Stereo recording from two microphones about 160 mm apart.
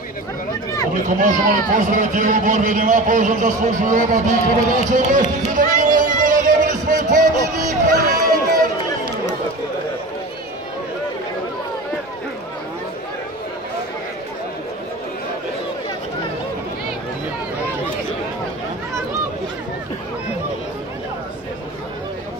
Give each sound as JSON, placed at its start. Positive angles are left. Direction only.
{"t": 1.0, "sound": "a man's voice", "side_deg": -50}